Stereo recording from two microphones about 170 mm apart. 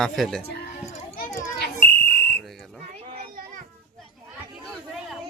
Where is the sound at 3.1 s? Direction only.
60° right (ahead or behind).